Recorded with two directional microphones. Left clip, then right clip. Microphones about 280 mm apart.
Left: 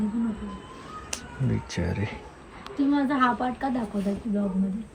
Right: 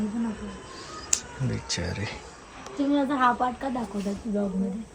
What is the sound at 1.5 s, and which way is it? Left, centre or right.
Speech, centre.